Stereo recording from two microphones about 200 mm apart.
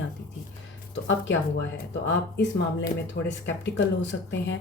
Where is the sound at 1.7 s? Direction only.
60° left (ahead or behind).